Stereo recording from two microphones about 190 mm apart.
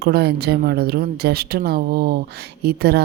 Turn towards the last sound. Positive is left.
turn(degrees=-55)  # may be behind; listen again after turning